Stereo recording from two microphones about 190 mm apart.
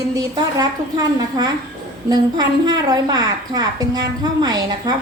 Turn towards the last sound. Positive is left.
turn(degrees=-20)  # may be behind; listen again after turning